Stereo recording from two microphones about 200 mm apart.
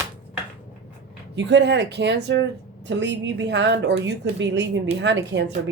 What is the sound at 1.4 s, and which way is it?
Speech, 60° right (ahead or behind).